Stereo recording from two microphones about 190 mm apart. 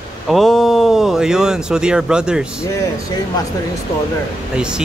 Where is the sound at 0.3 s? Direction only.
Centre (ahead or behind).